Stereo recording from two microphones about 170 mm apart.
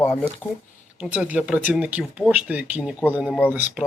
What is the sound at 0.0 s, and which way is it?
Speech, 10° left (ahead or behind).